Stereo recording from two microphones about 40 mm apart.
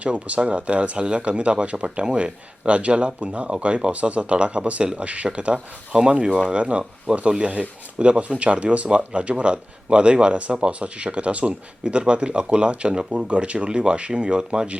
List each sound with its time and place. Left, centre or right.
0.0 s speech: right
4.8 s speech: right
5.0 s speech: right